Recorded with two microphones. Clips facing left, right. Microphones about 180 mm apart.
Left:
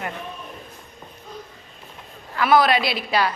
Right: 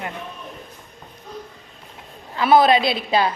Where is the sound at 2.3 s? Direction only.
25° right (ahead or behind).